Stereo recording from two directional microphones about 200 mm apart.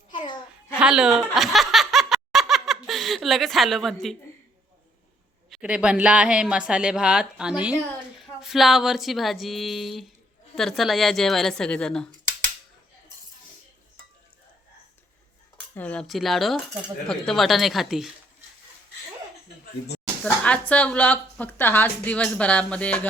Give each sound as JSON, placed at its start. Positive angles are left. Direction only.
{"t": 0.1, "sound": "a sound", "side_deg": 25}
{"t": 0.8, "sound": "snicker", "side_deg": -5}
{"t": 5.5, "sound": "a woman's voice", "side_deg": -5}
{"t": 15.7, "sound": "a woman's voice", "side_deg": 5}
{"t": 20.2, "sound": "a woman's voice", "side_deg": 5}